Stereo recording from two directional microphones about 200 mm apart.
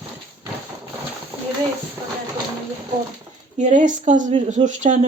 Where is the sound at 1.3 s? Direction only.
10° right (ahead or behind).